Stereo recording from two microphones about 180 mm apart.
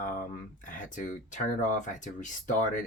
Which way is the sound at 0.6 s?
45° left (ahead or behind).